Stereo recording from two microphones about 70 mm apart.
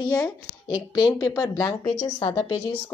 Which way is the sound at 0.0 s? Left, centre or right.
Left.